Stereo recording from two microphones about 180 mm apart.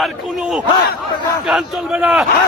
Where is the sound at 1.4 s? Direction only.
Centre (ahead or behind).